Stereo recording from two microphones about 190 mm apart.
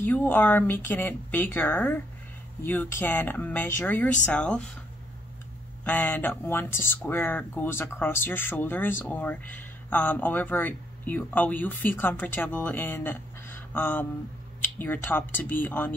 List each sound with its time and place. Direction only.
0.0 s speech: 10° left (ahead or behind)
5.9 s speech: 10° left (ahead or behind)